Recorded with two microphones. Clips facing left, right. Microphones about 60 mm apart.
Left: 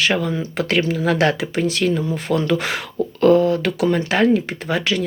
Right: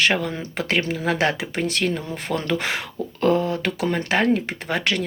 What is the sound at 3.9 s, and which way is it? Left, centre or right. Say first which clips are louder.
Speech: left 1 dB; right.